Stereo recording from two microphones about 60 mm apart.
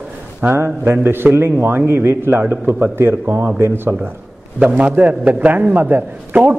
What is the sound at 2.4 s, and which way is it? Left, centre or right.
A man's voice, right.